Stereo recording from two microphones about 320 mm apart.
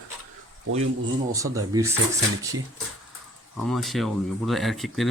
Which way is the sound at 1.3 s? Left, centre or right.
Centre.